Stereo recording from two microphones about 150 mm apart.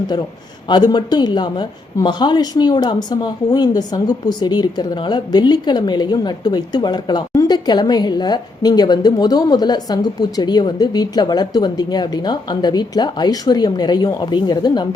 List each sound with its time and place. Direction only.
0.7 s speech: 30° left (ahead or behind)